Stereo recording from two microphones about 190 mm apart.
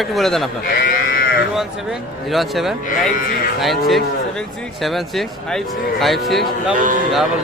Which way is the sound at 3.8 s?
Centre (ahead or behind).